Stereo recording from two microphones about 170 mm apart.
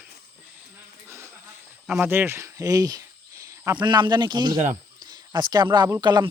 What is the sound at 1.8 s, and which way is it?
Speech, 10° right (ahead or behind).